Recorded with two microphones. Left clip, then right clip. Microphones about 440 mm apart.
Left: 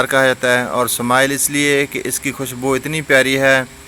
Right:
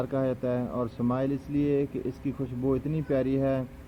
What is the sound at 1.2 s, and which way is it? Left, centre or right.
Speech, centre.